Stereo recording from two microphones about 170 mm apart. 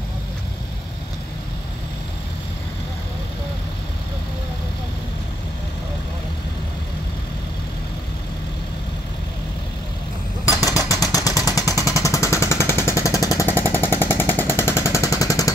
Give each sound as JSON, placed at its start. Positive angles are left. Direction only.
{"t": 10.4, "sound": "jackhammer", "side_deg": 20}
{"t": 11.7, "sound": "a sound", "side_deg": 20}
{"t": 13.7, "sound": "machine gun", "side_deg": 15}